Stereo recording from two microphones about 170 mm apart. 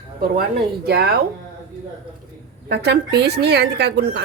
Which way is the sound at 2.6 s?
75° right (ahead or behind).